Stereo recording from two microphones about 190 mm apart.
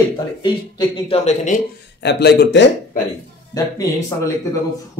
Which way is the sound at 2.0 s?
60° left (ahead or behind).